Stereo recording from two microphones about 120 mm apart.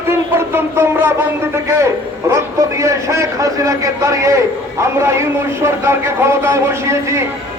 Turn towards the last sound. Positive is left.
turn(degrees=-25)  # may be behind; listen again after turning